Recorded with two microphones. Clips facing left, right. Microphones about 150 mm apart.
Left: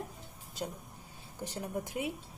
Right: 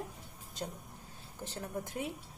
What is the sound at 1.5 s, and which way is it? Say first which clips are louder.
Speech: left 2 dB; 15° left (ahead or behind).